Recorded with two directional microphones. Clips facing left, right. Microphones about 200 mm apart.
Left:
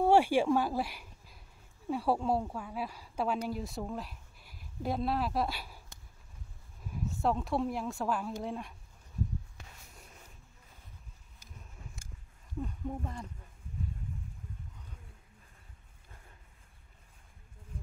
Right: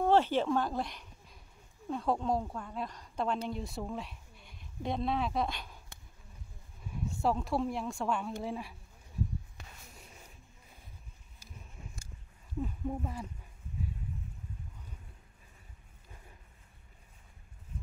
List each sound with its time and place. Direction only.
0.0 s speech: 10° left (ahead or behind)
6.8 s speech: centre (ahead or behind)
11.8 s a sound: 15° right (ahead or behind)
12.6 s speech: 5° right (ahead or behind)